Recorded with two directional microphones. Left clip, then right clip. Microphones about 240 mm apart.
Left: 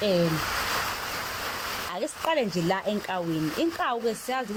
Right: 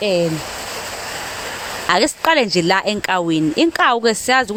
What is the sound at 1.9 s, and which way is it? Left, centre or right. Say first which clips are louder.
Speech: right 13 dB; right.